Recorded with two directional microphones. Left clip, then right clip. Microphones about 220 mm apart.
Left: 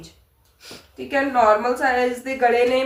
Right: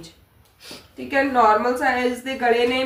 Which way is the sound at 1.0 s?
5° left (ahead or behind).